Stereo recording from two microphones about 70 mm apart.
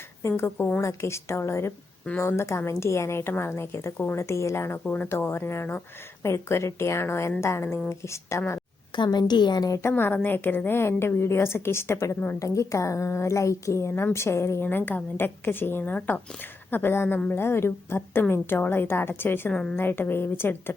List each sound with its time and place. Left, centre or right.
0.2 s a woman's voice: left
4.2 s a woman's voice: left
9.0 s a woman's voice: left
9.8 s a woman's voice: left
12.4 s a woman's voice: left